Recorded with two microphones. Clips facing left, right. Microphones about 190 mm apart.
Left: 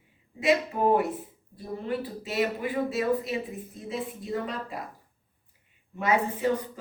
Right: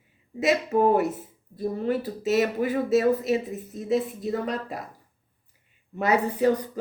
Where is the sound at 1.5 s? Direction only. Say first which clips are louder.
Right 6 dB; 40° right (ahead or behind).